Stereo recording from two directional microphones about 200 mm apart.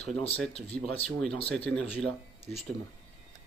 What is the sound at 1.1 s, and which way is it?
Speech, centre (ahead or behind).